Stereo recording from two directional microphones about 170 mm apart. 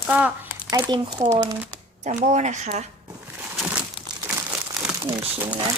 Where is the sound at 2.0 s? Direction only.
45° right (ahead or behind).